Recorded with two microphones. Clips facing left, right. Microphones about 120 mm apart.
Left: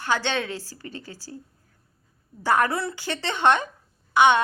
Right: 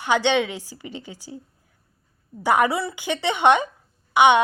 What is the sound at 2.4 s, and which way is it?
A woman's voice, 15° right (ahead or behind).